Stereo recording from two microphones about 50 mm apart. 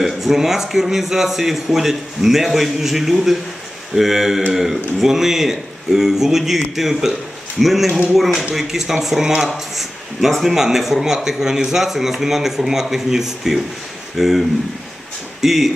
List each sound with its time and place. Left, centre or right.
0.0 s a man's voice: centre